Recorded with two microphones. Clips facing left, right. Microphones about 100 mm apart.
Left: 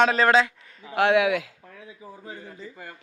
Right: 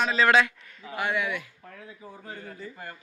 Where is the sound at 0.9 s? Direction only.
90° left.